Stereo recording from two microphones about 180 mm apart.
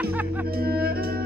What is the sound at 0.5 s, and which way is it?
Music, 60° right (ahead or behind).